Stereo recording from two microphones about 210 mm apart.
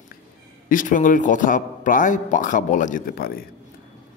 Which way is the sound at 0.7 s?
40° left (ahead or behind).